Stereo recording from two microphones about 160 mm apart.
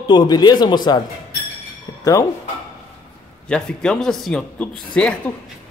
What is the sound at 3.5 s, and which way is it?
Speech, 5° left (ahead or behind).